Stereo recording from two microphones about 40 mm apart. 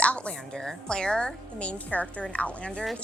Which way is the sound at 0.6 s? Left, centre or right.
Centre.